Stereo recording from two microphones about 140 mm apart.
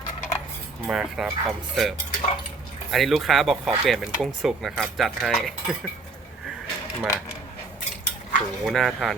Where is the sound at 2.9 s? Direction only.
Centre (ahead or behind).